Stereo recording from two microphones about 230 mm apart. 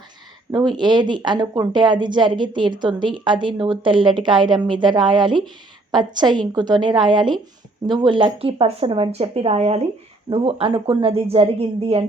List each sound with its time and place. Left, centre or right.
0.5 s speech: centre